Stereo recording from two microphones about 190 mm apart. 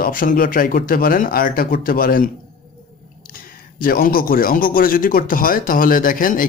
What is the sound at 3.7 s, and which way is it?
Speech, 50° left (ahead or behind).